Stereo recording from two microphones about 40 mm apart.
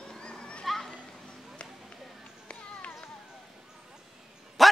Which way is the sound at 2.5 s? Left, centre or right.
Left.